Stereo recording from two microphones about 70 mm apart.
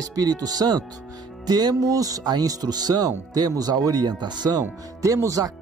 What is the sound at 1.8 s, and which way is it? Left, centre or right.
Speech, right.